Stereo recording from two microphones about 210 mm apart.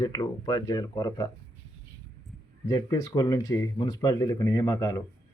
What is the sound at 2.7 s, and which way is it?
Speech, 15° left (ahead or behind).